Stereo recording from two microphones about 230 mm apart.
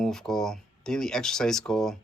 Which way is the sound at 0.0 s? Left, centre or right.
Centre.